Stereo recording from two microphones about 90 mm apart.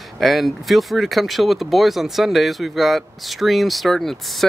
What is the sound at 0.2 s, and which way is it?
Speech, centre (ahead or behind).